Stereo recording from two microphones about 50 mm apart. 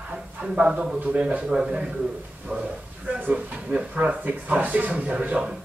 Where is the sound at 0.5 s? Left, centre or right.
Centre.